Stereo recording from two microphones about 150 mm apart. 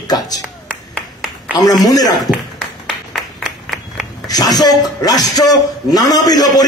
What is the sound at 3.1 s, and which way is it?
Applause, centre (ahead or behind).